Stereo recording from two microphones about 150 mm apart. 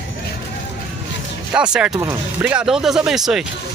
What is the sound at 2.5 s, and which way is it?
Speech, 5° right (ahead or behind).